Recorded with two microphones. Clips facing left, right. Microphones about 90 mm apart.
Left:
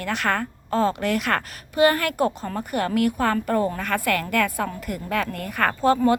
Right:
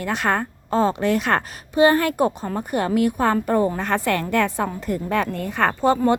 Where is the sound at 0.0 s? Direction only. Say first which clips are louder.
Right 2 dB; 20° right (ahead or behind).